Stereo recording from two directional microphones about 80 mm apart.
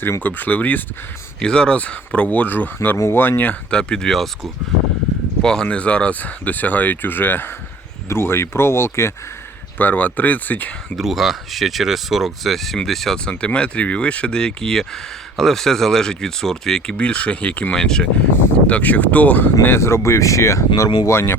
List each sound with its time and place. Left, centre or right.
0.0 s speech: left
1.4 s speech: centre; by 9.1 s left
9.7 s speech: left
10.9 s speech: centre
18.7 s speech: centre
19.6 s speech: left